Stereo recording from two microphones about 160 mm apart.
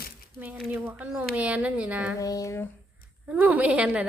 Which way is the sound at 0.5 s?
5° right (ahead or behind).